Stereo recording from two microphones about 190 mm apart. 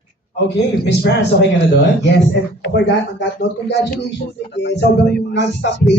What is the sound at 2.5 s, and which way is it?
Speech, 60° left (ahead or behind).